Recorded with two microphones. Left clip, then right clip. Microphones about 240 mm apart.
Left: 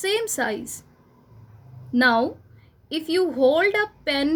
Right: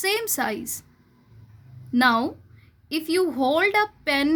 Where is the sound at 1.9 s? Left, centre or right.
Right.